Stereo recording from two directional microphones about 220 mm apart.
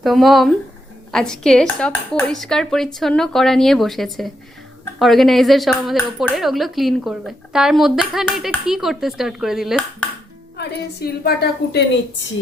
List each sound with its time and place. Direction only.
0.0 s speech: centre (ahead or behind)
10.6 s a woman's voice: 45° left (ahead or behind)